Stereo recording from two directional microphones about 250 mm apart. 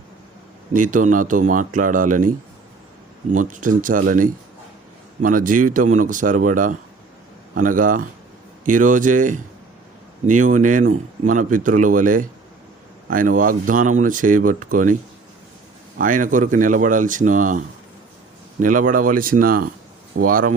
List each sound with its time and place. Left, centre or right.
0.7 s speech: right
3.3 s speech: right
16.0 s speech: right